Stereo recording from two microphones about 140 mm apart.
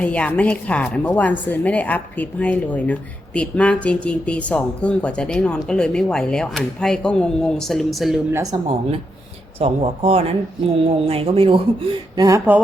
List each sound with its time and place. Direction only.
0.0 s speech: 10° left (ahead or behind)
8.3 s speech: 20° right (ahead or behind)
9.6 s speech: 50° right (ahead or behind)
12.5 s speech: 15° right (ahead or behind)